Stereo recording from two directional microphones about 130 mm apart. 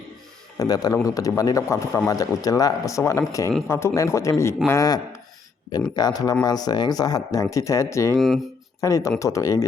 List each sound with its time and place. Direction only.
0.5 s a man's voice: 30° left (ahead or behind)